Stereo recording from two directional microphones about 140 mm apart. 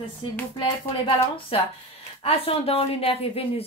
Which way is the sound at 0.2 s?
40° left (ahead or behind).